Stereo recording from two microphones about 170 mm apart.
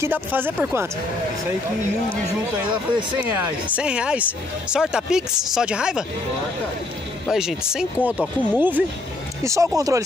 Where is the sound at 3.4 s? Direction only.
10° right (ahead or behind).